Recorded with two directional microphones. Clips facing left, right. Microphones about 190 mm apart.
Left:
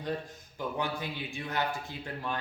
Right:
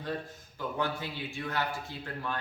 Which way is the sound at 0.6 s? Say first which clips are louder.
Left 1 dB; 20° left (ahead or behind).